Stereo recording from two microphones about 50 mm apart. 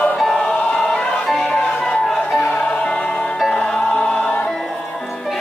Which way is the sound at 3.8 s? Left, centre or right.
Centre.